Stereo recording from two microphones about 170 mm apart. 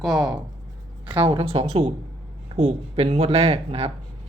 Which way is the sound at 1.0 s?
30° right (ahead or behind).